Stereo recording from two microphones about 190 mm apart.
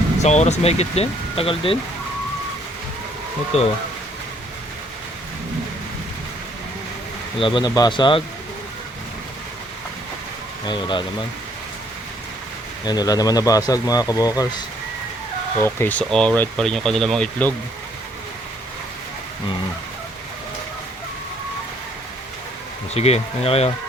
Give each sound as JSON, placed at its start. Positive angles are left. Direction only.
{"t": 0.2, "sound": "speech", "side_deg": 35}
{"t": 3.5, "sound": "speech", "side_deg": 35}
{"t": 7.3, "sound": "speech", "side_deg": 25}
{"t": 10.7, "sound": "speech", "side_deg": 25}
{"t": 12.8, "sound": "speech", "side_deg": 20}
{"t": 15.6, "sound": "speech", "side_deg": 10}
{"t": 23.0, "sound": "speech", "side_deg": 35}